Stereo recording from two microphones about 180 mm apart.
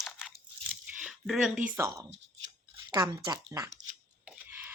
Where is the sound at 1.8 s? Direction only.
20° right (ahead or behind).